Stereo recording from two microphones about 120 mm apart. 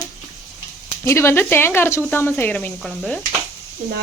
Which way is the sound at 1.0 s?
25° left (ahead or behind).